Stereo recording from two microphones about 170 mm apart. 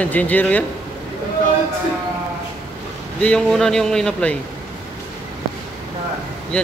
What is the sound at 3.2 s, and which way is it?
A man's voice, 5° left (ahead or behind).